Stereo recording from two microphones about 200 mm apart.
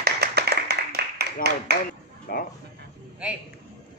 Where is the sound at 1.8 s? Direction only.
50° left (ahead or behind).